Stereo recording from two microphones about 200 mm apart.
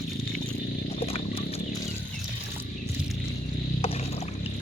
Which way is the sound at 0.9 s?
30° left (ahead or behind).